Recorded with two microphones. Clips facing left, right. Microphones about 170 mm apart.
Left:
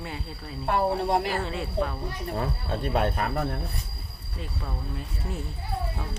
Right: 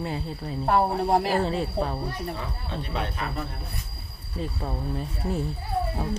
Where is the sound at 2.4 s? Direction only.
45° left (ahead or behind).